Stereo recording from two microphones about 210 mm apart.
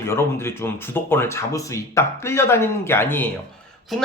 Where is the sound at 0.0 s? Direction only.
10° left (ahead or behind).